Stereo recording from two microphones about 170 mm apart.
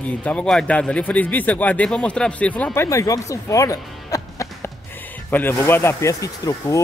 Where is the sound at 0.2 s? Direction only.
5° left (ahead or behind).